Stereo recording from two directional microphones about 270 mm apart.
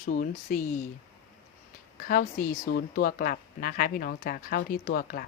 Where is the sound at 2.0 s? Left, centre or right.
Left.